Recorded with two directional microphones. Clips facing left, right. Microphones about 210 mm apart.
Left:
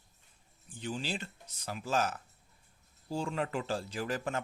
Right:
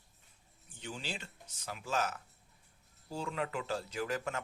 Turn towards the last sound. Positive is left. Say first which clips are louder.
# left 2 dB
turn(degrees=35)  # may be behind; listen again after turning